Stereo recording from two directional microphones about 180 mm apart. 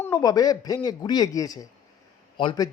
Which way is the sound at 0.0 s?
20° left (ahead or behind).